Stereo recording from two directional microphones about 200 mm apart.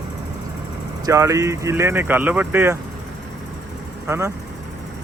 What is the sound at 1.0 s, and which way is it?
Speech, 15° right (ahead or behind).